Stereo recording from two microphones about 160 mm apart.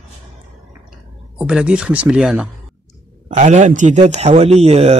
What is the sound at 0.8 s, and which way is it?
Speech, 5° right (ahead or behind).